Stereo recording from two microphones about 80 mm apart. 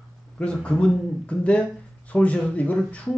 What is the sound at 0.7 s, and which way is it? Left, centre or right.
Speech, centre.